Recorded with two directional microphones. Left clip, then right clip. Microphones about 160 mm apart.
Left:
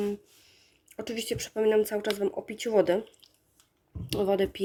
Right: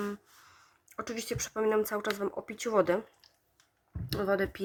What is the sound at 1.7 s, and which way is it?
Speech, 60° right (ahead or behind).